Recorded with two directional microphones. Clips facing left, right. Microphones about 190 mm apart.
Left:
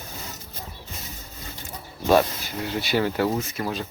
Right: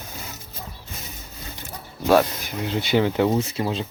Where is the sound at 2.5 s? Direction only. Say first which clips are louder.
Right 3 dB; 20° right (ahead or behind).